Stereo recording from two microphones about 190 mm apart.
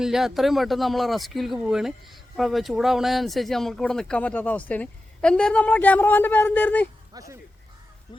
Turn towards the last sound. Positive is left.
turn(degrees=-15)  # may be behind; listen again after turning